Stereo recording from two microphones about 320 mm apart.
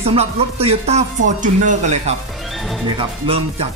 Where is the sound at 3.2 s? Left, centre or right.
Centre.